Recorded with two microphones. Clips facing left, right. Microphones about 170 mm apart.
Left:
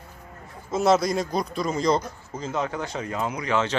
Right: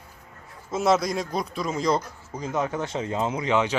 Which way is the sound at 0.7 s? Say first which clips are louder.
Left 2 dB; centre (ahead or behind).